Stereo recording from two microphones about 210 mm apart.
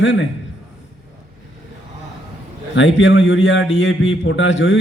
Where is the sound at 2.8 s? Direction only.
65° left (ahead or behind).